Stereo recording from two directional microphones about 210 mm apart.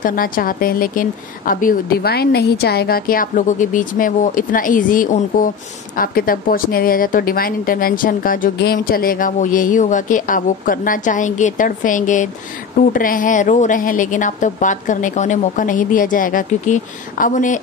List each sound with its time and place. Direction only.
0.0 s a woman's voice: 45° left (ahead or behind)